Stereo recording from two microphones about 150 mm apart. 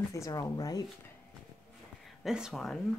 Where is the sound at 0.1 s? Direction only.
25° left (ahead or behind).